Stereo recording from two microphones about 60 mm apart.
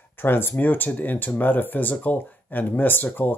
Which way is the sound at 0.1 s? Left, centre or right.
Left.